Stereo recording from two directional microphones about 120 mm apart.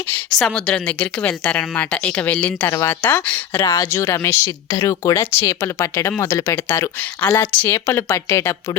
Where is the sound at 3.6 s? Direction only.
25° left (ahead or behind).